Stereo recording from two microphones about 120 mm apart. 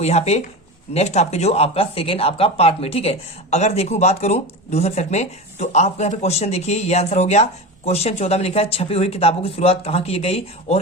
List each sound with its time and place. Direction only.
0.0 s speech: 65° left (ahead or behind)